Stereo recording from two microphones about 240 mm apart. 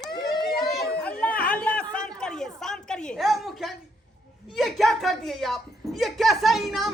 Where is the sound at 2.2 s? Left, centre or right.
Centre.